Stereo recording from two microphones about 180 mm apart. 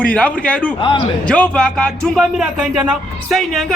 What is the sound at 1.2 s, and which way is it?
Speech, 5° left (ahead or behind).